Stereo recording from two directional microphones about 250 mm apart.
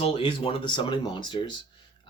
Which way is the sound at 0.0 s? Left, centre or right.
Left.